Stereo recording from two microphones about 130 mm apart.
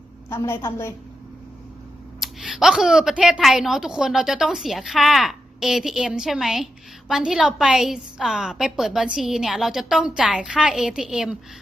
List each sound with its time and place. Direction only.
0.3 s a woman's voice: 20° left (ahead or behind)
2.2 s a woman's voice: 5° right (ahead or behind)